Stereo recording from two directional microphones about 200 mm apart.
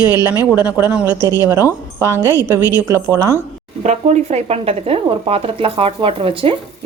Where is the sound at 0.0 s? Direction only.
10° right (ahead or behind).